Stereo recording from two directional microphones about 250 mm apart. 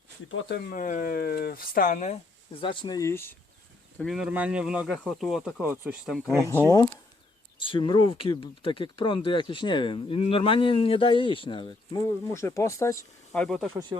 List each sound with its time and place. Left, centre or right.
0.3 s speech: left; by 6.3 s centre
6.5 s speech: centre